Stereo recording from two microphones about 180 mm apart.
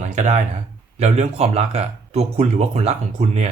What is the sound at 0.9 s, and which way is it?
Speech, 35° right (ahead or behind).